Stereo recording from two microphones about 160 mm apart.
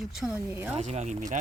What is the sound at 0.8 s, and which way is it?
Speech, 45° right (ahead or behind).